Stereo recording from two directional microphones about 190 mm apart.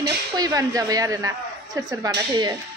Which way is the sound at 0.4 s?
20° right (ahead or behind).